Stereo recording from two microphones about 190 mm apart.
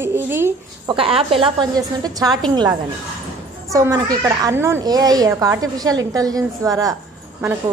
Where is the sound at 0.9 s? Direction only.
30° right (ahead or behind).